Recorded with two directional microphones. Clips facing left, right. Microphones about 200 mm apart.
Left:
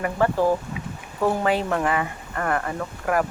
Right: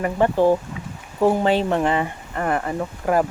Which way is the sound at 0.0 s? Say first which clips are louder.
Right 3 dB; 25° right (ahead or behind).